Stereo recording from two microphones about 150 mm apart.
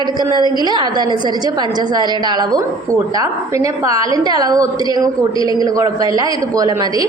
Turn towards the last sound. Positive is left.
turn(degrees=-25)  # may be behind; listen again after turning